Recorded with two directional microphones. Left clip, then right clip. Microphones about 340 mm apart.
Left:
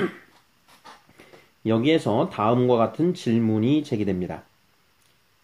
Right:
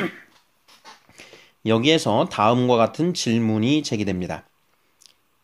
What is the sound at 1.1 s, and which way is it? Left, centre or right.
Speech, right.